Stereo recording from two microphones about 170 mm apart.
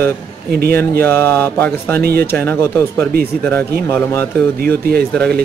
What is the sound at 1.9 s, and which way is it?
Speech, 65° right (ahead or behind).